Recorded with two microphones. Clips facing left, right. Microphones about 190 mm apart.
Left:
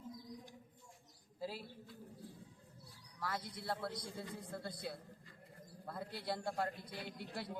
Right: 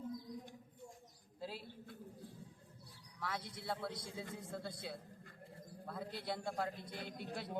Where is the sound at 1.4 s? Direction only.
5° left (ahead or behind).